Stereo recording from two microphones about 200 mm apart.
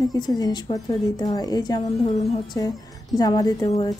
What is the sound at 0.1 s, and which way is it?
Speech, 20° left (ahead or behind).